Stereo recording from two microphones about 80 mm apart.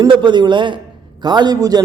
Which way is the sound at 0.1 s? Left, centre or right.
Right.